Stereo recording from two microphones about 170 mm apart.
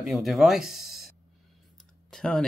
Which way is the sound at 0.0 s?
Centre (ahead or behind).